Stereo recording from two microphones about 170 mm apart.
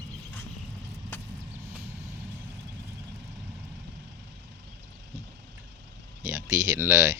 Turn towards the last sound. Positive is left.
turn(degrees=-15)  # may be behind; listen again after turning